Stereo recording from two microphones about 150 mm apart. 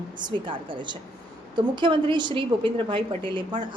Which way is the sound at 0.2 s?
30° right (ahead or behind).